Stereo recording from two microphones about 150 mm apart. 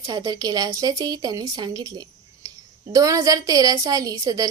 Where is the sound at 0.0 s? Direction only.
25° right (ahead or behind).